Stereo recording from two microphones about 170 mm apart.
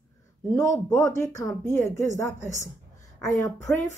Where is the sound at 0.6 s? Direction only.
20° left (ahead or behind).